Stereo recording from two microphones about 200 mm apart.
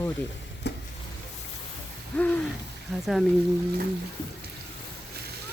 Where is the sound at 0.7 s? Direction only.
60° left (ahead or behind).